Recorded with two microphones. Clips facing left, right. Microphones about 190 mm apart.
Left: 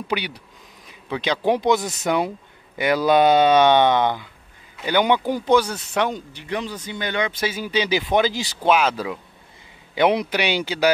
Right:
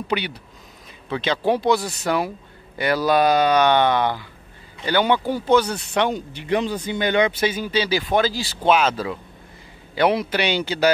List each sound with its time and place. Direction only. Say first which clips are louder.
0.1 s speech: right 1 dB; 10° left (ahead or behind)
6.3 s speech: right 6 dB; 25° right (ahead or behind)
7.4 s speech: right 2 dB; 10° left (ahead or behind)